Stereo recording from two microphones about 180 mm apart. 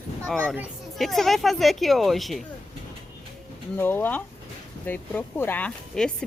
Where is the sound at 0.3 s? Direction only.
5° left (ahead or behind).